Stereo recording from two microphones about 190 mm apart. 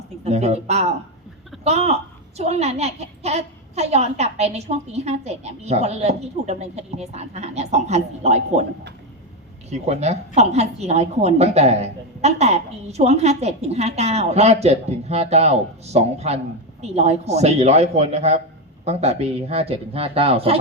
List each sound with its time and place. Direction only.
0.3 s a woman's voice: 35° right (ahead or behind)
9.6 s a woman's voice: 35° right (ahead or behind)